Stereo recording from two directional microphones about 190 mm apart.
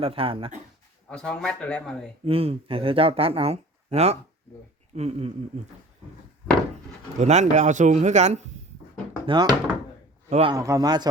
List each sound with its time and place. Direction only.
0.0 s speech: 30° right (ahead or behind)
1.1 s speech: 5° left (ahead or behind)
2.2 s speech: 30° right (ahead or behind)
7.2 s speech: 35° right (ahead or behind)
9.2 s speech: 20° right (ahead or behind)
10.2 s a man's voice: 35° right (ahead or behind)
10.5 s speech: 20° right (ahead or behind)